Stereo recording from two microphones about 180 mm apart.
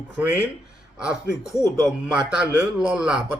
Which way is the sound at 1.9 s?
5° right (ahead or behind).